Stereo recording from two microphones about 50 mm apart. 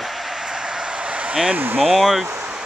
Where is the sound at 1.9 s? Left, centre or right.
Centre.